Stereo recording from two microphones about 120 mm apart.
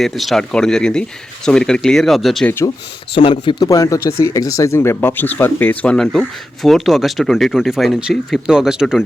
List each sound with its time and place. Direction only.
0.0 s speech: centre (ahead or behind)
3.2 s a man's voice: 45° left (ahead or behind)
3.7 s speech: 25° left (ahead or behind); by 9.0 s 5° right (ahead or behind)